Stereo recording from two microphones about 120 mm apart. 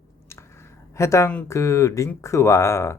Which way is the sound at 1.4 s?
25° left (ahead or behind).